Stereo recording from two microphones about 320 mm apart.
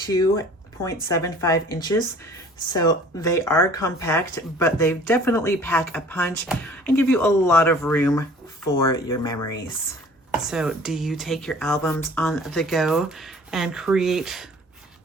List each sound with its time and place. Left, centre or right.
0.0 s speech: centre
10.4 s speech: centre